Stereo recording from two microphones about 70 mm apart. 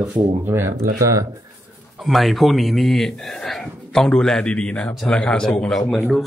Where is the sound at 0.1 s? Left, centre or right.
Right.